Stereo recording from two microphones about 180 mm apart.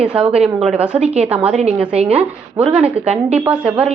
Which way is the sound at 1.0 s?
35° right (ahead or behind).